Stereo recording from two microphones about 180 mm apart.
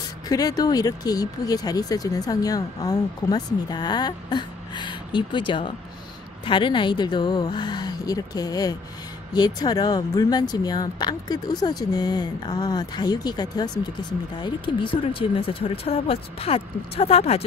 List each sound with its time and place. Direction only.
0.3 s speech: 20° left (ahead or behind)